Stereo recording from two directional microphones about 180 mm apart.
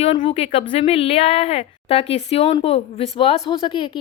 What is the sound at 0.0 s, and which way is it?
Speech, 30° left (ahead or behind).